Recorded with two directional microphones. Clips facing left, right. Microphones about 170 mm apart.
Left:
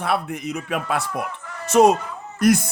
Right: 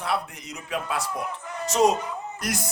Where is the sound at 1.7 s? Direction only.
55° left (ahead or behind).